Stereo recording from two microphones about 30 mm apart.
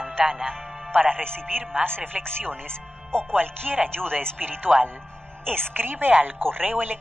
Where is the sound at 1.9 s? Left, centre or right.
Right.